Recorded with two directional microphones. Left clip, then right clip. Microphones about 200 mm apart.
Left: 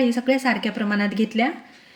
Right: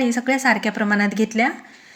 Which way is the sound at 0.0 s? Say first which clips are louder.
Right 1 dB; 10° right (ahead or behind).